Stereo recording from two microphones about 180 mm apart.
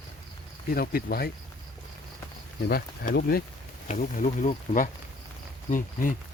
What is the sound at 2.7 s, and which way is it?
Speech, 60° left (ahead or behind).